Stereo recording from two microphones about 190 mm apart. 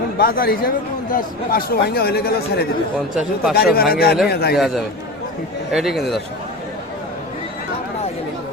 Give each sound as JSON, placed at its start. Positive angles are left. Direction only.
{"t": 0.2, "sound": "a man's voice", "side_deg": 50}
{"t": 4.5, "sound": "a man's voice", "side_deg": 0}